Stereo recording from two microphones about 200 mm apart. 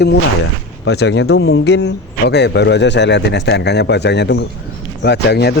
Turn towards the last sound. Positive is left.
turn(degrees=55)  # may be behind; listen again after turning